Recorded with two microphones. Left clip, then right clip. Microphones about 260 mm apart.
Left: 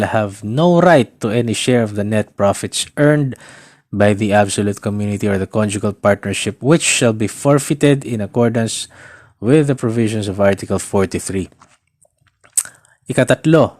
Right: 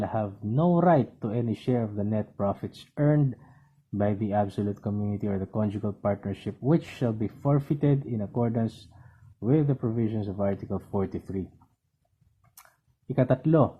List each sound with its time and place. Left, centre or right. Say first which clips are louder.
0.0 s speech: left 13 dB; left
5.8 s speech: left 14 dB; left
10.3 s speech: left 18 dB; left
13.1 s speech: left 11 dB; left